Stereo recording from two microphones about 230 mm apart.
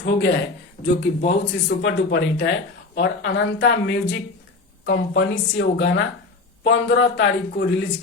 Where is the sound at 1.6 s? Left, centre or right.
Left.